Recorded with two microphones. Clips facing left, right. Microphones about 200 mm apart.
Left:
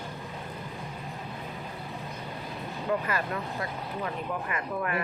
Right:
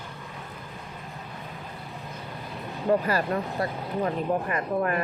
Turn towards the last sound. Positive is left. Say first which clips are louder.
# right 5 dB
turn(degrees=-35)  # may be behind; listen again after turning